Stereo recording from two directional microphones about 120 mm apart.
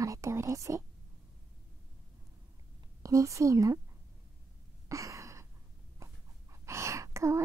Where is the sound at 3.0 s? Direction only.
25° right (ahead or behind).